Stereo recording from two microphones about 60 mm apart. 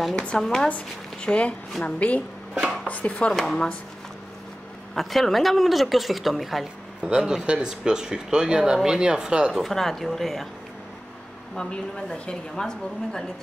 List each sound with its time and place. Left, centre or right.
0.1 s a woman's voice: centre
0.7 s speech: left
2.0 s chopping: left
3.3 s a woman's voice: centre
4.9 s speech: centre
7.0 s speech: centre
9.5 s speech: centre
11.5 s a woman's voice: centre